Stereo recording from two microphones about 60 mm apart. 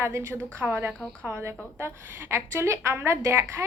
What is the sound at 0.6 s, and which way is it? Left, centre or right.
Speech, right.